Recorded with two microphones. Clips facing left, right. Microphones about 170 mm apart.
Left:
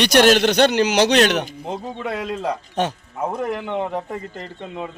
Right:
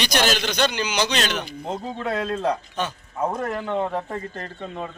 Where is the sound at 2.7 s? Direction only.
75° left (ahead or behind).